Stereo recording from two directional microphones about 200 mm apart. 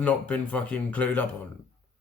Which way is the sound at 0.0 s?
5° left (ahead or behind).